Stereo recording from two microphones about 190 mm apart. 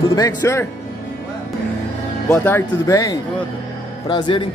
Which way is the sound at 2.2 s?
10° left (ahead or behind).